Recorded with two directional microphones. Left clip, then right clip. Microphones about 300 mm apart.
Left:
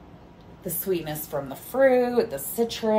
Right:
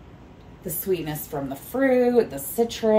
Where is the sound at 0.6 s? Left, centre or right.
Centre.